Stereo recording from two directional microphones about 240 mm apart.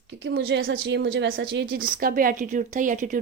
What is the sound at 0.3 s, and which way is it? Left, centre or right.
A woman's voice, right.